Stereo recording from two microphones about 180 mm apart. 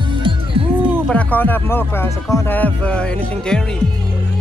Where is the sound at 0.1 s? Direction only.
30° right (ahead or behind).